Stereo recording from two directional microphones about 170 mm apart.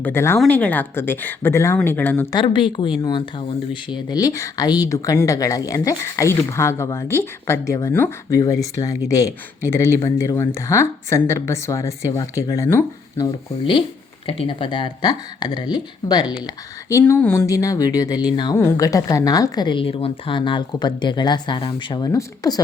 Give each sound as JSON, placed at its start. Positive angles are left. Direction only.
{"t": 0.0, "sound": "speech", "side_deg": 15}
{"t": 2.3, "sound": "speech", "side_deg": 30}
{"t": 14.3, "sound": "speech", "side_deg": 30}
{"t": 16.9, "sound": "speech", "side_deg": 10}